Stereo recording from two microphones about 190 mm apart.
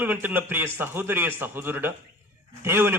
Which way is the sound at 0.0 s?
10° right (ahead or behind).